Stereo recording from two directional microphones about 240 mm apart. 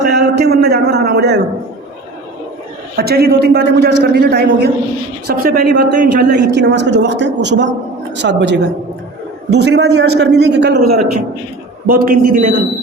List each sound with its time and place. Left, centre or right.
0.1 s a sound: right
2.9 s a man's voice: right
6.5 s a man's voice: right